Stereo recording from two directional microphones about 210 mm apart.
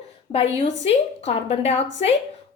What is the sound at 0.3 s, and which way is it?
A woman's voice, 25° left (ahead or behind).